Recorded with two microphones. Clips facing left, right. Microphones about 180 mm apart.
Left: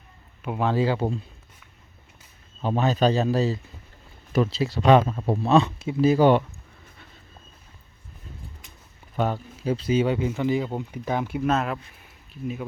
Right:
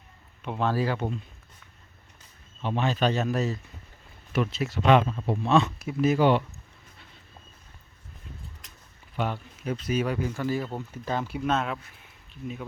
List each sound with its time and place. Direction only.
0.4 s a man's voice: 5° left (ahead or behind)
0.7 s speech: 25° left (ahead or behind)
2.6 s speech: 40° left (ahead or behind)
9.1 s speech: 40° left (ahead or behind); by 12.6 s 5° left (ahead or behind)